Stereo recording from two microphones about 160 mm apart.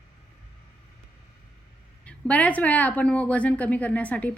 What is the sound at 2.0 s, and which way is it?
A woman's voice, 10° left (ahead or behind).